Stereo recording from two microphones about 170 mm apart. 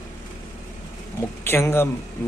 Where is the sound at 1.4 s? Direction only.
15° left (ahead or behind).